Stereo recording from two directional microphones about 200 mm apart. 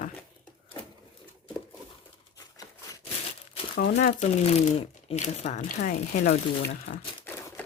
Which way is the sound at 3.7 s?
50° left (ahead or behind).